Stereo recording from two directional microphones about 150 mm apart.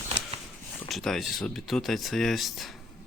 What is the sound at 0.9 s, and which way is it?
Speech, centre (ahead or behind).